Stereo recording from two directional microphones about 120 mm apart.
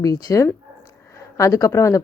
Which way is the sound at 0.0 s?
30° left (ahead or behind).